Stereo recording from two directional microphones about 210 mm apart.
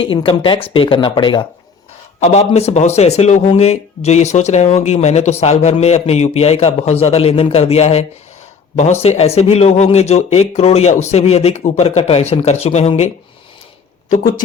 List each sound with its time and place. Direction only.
0.0 s a man's voice: 25° left (ahead or behind)